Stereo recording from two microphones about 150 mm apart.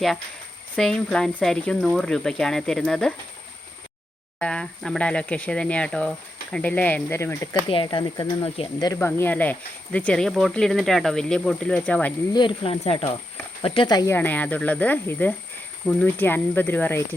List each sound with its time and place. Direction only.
0.8 s speech: 5° left (ahead or behind)
4.4 s speech: 5° left (ahead or behind)
7.7 s speech: 35° left (ahead or behind)
8.0 s speech: 25° left (ahead or behind)
12.3 s speech: 30° left (ahead or behind)
14.1 s speech: 15° left (ahead or behind)